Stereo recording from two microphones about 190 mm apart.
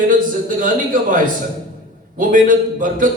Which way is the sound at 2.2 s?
45° right (ahead or behind).